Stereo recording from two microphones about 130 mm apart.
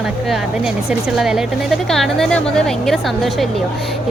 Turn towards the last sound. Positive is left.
turn(degrees=0)  # may be behind; listen again after turning